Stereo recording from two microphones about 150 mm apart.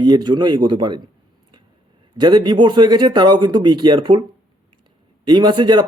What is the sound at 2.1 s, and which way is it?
Speech, 30° right (ahead or behind).